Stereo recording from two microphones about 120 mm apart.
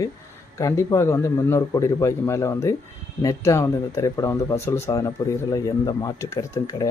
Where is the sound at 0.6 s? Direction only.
25° left (ahead or behind).